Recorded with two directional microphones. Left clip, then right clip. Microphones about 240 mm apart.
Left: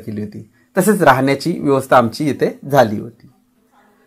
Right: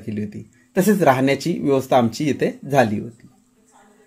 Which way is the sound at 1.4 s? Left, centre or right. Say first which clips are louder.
Left 3 dB; left.